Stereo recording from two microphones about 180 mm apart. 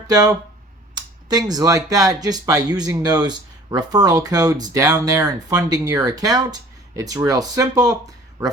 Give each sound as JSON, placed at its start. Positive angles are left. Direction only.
{"t": 0.1, "sound": "speech", "side_deg": -20}